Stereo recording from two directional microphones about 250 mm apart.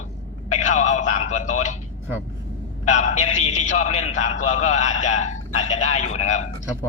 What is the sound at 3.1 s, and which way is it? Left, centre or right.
A man's voice, left.